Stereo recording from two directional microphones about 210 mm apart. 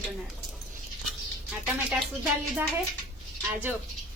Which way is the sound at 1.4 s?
Centre (ahead or behind).